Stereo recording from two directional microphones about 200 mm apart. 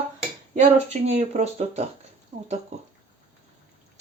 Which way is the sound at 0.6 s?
35° right (ahead or behind).